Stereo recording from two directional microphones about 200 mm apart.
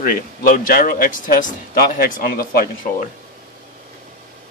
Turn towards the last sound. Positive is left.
turn(degrees=45)  # may be behind; listen again after turning